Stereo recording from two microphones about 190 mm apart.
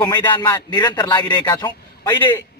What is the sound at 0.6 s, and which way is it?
A man's voice, 20° left (ahead or behind).